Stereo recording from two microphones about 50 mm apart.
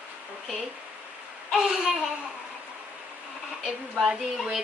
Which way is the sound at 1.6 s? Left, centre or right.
Centre.